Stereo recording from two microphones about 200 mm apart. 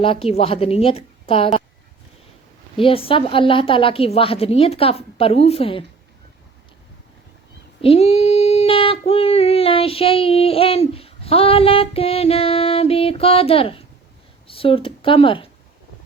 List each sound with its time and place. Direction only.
0.0 s a woman's voice: 30° left (ahead or behind)
2.7 s a woman's voice: 25° left (ahead or behind)
7.8 s child singing: 30° left (ahead or behind)
14.4 s speech: 25° left (ahead or behind)